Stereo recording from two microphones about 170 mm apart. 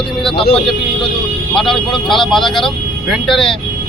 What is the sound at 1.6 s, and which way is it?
Speech, centre (ahead or behind).